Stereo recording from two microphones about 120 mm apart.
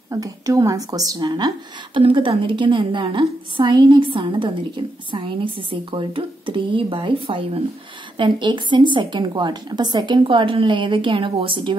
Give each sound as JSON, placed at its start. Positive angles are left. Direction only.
{"t": 0.1, "sound": "a woman's voice", "side_deg": -30}
{"t": 2.0, "sound": "a woman's voice", "side_deg": -45}